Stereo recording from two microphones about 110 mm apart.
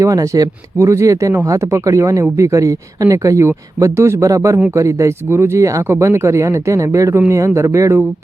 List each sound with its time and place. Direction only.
0.0 s speech: 30° right (ahead or behind)